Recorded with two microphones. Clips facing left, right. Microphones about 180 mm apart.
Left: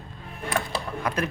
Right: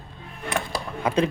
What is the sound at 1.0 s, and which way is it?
Speech, 25° right (ahead or behind).